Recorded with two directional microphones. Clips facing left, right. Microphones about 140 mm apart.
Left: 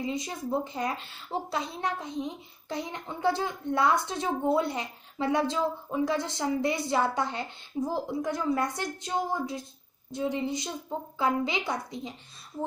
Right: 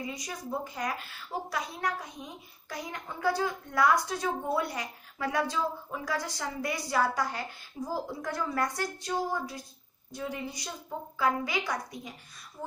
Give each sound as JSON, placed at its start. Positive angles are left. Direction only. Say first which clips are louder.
{"t": 0.0, "sound": "a woman's voice", "louder": "left 6 dB", "side_deg": 25}